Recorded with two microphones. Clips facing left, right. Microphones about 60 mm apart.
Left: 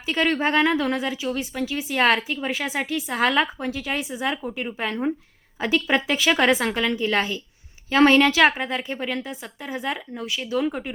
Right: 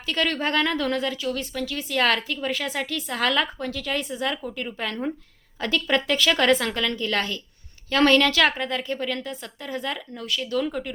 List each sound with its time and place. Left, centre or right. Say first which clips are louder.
0.0 s a woman's voice: left 3 dB; centre